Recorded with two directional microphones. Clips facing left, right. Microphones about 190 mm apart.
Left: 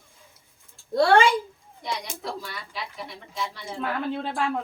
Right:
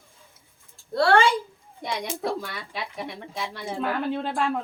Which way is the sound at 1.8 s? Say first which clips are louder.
Right 4 dB; 55° right (ahead or behind).